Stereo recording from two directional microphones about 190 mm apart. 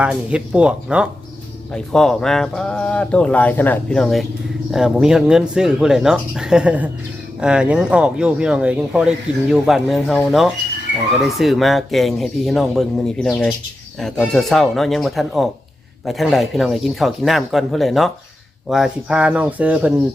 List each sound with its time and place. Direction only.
0.0 s speech: 5° right (ahead or behind)